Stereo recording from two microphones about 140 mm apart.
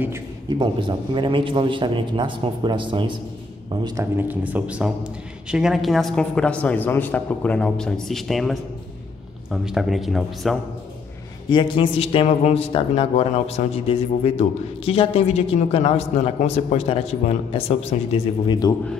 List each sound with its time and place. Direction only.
0.5 s a man's voice: 35° right (ahead or behind)
3.8 s speech: 25° right (ahead or behind)
4.2 s a man's voice: 10° right (ahead or behind)
11.5 s a man's voice: 35° left (ahead or behind)
18.5 s a man's voice: 25° left (ahead or behind)